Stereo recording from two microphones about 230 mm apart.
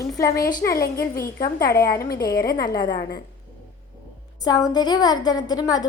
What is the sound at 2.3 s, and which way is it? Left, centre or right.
Speech, centre.